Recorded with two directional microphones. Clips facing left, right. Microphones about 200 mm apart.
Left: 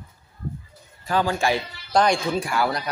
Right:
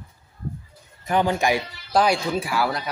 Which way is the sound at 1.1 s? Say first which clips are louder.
Right 1 dB; 20° right (ahead or behind).